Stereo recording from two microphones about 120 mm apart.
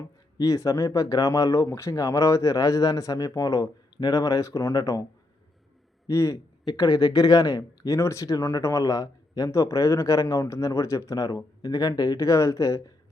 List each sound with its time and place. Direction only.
0.0 s speech: 30° left (ahead or behind)
6.1 s speech: 25° left (ahead or behind)